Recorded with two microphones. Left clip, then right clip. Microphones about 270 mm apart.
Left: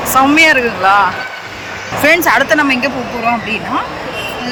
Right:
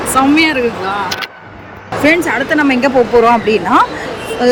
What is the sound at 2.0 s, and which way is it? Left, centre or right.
Speech, centre.